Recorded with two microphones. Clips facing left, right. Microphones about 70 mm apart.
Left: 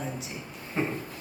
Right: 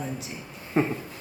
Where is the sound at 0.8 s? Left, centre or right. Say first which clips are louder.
Right 5 dB; centre.